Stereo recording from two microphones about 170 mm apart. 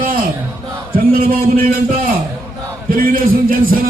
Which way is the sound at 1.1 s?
55° right (ahead or behind).